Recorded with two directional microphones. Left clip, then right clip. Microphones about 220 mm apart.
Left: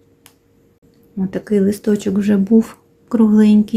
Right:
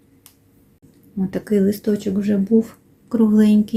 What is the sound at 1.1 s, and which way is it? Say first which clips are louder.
Speech: left 2 dB; 5° left (ahead or behind).